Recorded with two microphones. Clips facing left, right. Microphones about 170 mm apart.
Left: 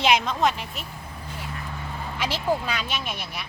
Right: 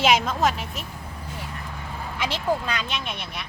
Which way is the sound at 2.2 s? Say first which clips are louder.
Even; 10° left (ahead or behind).